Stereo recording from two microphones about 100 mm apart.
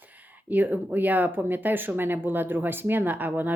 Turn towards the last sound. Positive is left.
turn(degrees=-20)  # may be behind; listen again after turning